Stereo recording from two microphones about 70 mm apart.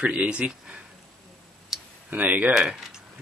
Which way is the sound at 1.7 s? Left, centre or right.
Centre.